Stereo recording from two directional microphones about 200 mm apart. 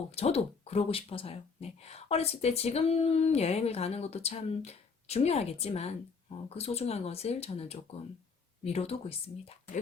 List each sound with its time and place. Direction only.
0.1 s a woman's voice: 30° left (ahead or behind)